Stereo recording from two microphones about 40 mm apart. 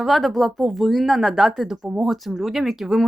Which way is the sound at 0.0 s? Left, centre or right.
Centre.